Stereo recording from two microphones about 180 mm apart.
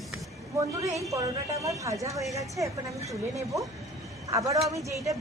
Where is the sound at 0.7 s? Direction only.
15° right (ahead or behind).